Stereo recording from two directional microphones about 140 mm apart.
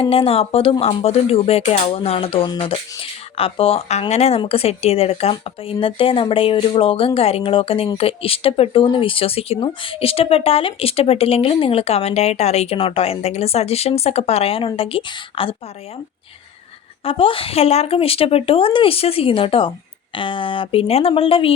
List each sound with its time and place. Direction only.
0.0 s speech: 40° left (ahead or behind)
17.0 s speech: 40° left (ahead or behind)